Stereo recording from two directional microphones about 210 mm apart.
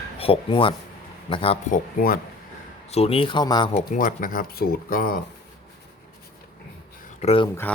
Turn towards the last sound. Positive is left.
turn(degrees=30)  # may be behind; listen again after turning